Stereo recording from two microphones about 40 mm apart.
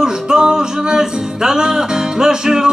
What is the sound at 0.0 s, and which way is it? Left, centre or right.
Music, centre.